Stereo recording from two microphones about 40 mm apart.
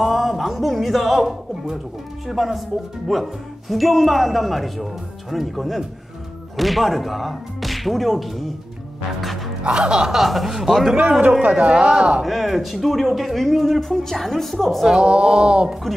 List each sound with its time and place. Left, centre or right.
0.0 s speech: centre
9.6 s speech: right
10.1 s speech: centre
11.0 s a man's voice: right
12.3 s speech: centre
14.9 s speech: right